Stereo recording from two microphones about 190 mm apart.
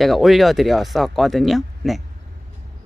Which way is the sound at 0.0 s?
Centre (ahead or behind).